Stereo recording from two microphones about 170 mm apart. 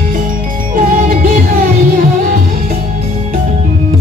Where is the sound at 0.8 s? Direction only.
55° right (ahead or behind).